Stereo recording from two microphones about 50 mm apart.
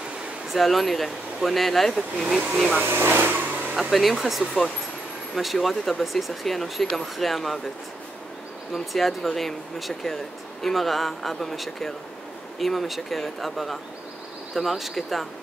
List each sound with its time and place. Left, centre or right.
0.5 s speech: centre
2.2 s speech: centre
2.8 s speech: right
3.9 s speech: centre
8.7 s speech: centre